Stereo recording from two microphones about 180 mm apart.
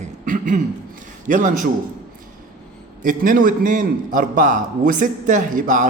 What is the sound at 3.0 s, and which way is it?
A man's voice, 50° right (ahead or behind).